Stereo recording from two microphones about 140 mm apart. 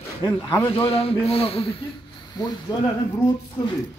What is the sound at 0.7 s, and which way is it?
Speech, 45° left (ahead or behind).